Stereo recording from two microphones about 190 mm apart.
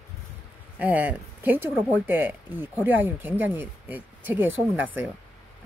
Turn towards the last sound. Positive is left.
turn(degrees=-10)  # may be behind; listen again after turning